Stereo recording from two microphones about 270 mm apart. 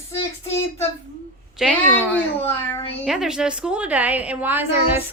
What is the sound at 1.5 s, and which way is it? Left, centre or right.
Speech, centre.